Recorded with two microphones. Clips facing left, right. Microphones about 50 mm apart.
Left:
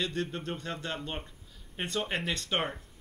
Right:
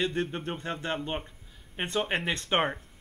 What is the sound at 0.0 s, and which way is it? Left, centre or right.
Speech, right.